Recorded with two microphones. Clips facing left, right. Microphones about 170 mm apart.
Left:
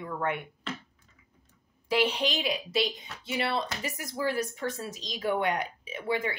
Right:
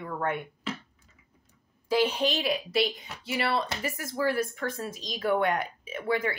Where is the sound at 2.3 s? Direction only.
20° left (ahead or behind).